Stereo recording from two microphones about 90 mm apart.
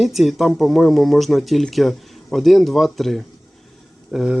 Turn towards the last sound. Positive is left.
turn(degrees=-10)  # may be behind; listen again after turning